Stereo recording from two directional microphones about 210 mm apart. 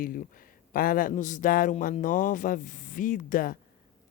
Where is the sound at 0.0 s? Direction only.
40° left (ahead or behind).